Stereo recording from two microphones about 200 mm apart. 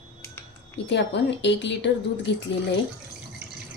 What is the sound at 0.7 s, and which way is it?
A woman's voice, 65° left (ahead or behind).